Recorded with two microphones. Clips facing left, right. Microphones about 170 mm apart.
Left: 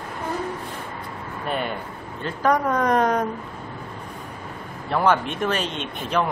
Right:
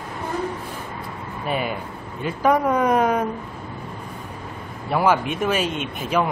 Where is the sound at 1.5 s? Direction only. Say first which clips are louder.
Right 2 dB; 5° right (ahead or behind).